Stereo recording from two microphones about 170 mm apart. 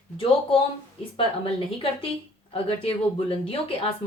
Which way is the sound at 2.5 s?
35° left (ahead or behind).